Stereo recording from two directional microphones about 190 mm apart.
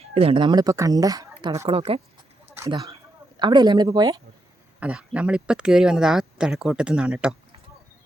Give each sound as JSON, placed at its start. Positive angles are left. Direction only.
{"t": 0.0, "sound": "speech", "side_deg": -30}
{"t": 2.6, "sound": "speech", "side_deg": -20}
{"t": 4.8, "sound": "speech", "side_deg": -5}